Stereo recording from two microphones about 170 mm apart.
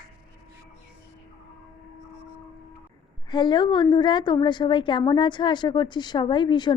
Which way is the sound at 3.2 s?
25° left (ahead or behind).